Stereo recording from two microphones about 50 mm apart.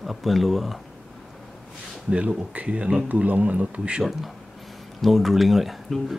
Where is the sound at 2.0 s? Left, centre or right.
Right.